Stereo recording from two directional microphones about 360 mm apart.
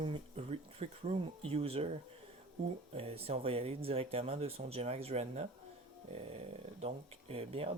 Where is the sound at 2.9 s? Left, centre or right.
Centre.